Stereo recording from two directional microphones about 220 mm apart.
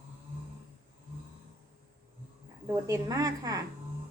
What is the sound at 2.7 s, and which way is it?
Speech, 15° right (ahead or behind).